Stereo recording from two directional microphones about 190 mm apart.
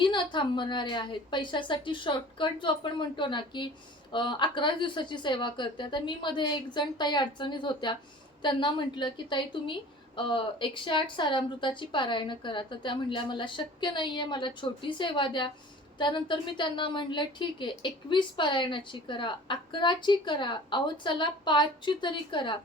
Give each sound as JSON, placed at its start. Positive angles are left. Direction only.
{"t": 0.0, "sound": "a woman's voice", "side_deg": 25}